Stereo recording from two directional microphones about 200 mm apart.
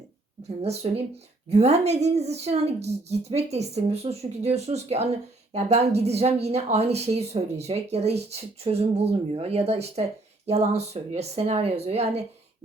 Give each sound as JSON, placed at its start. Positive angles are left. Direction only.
{"t": 0.6, "sound": "a woman's voice", "side_deg": -30}